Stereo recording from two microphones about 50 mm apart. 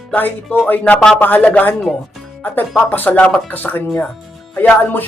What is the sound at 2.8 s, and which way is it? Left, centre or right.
Speech, left.